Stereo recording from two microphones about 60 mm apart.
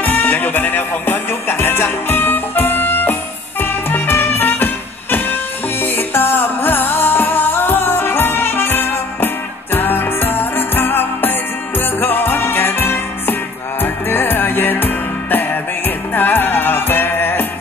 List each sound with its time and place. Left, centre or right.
0.0 s music: left